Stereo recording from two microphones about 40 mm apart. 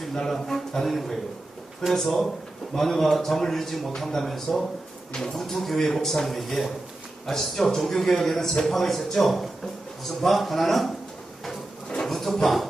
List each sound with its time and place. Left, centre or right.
0.0 s a man's voice: centre
5.4 s a man's voice: centre
12.1 s speech: centre